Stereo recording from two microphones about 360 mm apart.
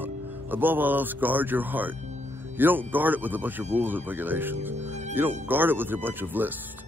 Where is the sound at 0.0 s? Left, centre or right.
Centre.